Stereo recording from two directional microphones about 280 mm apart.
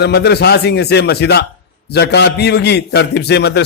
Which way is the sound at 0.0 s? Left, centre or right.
Left.